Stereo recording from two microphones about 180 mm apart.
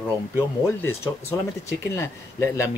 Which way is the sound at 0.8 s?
10° left (ahead or behind).